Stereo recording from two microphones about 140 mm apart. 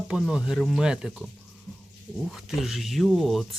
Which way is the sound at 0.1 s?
5° right (ahead or behind).